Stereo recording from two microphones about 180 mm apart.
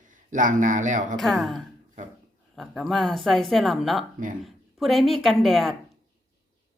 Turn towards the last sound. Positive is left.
turn(degrees=0)  # may be behind; listen again after turning